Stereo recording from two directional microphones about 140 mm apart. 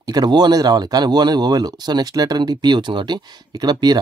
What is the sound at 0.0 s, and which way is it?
Speech, 30° right (ahead or behind).